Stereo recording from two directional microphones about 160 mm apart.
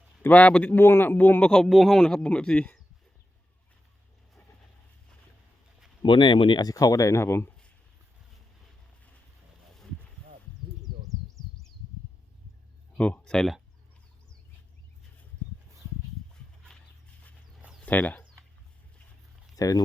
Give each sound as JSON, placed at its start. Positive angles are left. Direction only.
{"t": 0.2, "sound": "a man's voice", "side_deg": 10}
{"t": 6.0, "sound": "speech", "side_deg": 30}
{"t": 13.0, "sound": "speech", "side_deg": 10}
{"t": 17.8, "sound": "speech", "side_deg": 10}
{"t": 19.5, "sound": "speech", "side_deg": 20}